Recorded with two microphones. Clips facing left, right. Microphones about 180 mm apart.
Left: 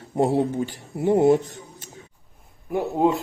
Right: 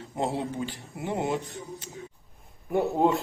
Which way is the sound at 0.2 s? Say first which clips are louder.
Left 8 dB; 40° left (ahead or behind).